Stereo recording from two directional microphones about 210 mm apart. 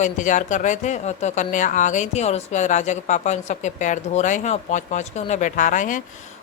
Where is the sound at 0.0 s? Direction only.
35° left (ahead or behind).